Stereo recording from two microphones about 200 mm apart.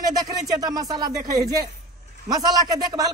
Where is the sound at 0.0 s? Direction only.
20° right (ahead or behind).